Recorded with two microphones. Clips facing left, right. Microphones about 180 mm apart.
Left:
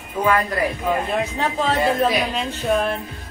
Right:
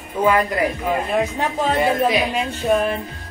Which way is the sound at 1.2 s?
10° right (ahead or behind).